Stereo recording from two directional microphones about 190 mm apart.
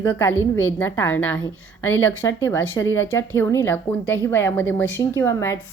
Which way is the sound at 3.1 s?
10° left (ahead or behind).